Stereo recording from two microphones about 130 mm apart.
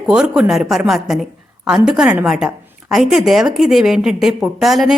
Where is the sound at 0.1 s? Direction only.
5° right (ahead or behind).